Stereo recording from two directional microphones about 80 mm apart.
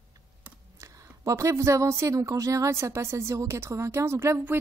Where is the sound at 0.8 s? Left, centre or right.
Right.